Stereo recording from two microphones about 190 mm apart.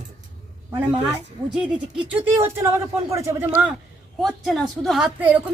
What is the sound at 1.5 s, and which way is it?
Speech, 5° right (ahead or behind).